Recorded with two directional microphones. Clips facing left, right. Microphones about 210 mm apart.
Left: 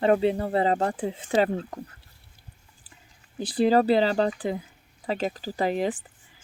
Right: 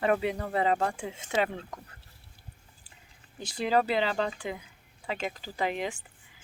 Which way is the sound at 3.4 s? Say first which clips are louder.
Left 7 dB; 35° left (ahead or behind).